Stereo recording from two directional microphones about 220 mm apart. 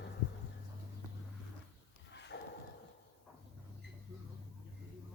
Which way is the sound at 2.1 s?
50° left (ahead or behind).